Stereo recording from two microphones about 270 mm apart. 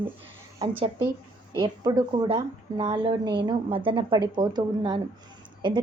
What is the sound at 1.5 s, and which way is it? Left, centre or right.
A woman's voice, centre.